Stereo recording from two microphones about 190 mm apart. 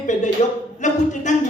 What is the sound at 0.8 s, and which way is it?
Speech, 40° left (ahead or behind).